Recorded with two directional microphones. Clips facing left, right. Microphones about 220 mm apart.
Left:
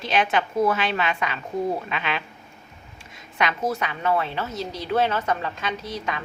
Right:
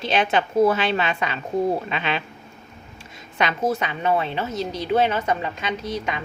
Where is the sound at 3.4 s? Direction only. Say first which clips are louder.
Right 2 dB; 25° right (ahead or behind).